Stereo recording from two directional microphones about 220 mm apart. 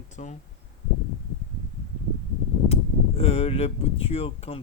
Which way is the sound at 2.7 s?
25° left (ahead or behind).